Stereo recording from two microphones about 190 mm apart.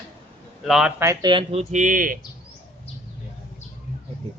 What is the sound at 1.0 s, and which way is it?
Speech, 20° right (ahead or behind).